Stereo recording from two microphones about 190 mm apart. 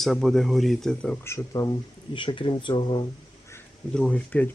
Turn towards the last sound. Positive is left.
turn(degrees=5)  # may be behind; listen again after turning